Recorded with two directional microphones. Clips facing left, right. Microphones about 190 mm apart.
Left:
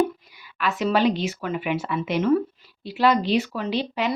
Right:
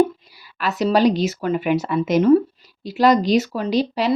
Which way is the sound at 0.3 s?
35° right (ahead or behind).